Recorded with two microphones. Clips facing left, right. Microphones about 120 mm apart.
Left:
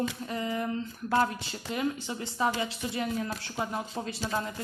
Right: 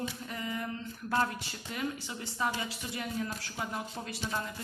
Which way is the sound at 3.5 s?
25° left (ahead or behind).